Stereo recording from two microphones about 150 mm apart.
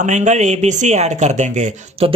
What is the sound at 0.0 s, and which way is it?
Speech, 55° right (ahead or behind).